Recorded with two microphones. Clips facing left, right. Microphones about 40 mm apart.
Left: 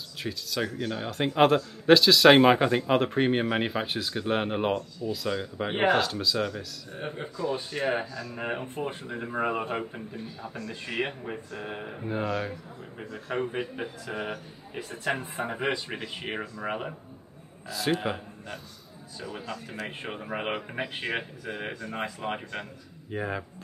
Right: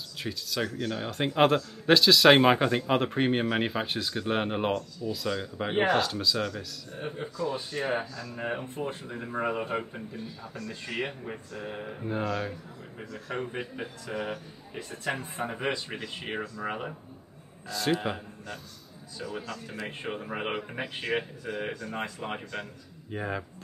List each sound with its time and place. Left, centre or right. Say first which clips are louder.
0.2 s speech: left 1 dB; centre
8.1 s speech: left 1 dB; left
10.4 s a man's voice: left 2 dB; left
20.0 s speech: right 1 dB; centre